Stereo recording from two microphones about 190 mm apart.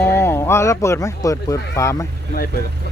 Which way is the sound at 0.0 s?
15° left (ahead or behind).